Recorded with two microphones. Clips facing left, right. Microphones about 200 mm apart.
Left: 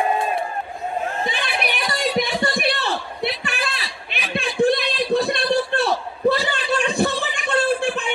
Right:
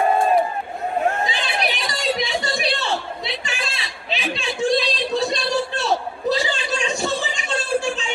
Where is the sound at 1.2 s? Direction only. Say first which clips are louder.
Right 1 dB; 55° left (ahead or behind).